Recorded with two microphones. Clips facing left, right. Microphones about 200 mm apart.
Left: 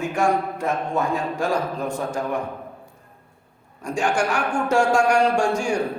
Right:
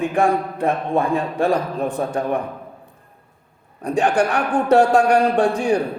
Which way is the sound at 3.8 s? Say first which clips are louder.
Right 5 dB; 35° right (ahead or behind).